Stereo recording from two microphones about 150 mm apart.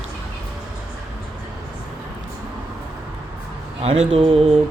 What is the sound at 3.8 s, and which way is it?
Mantra, 45° right (ahead or behind).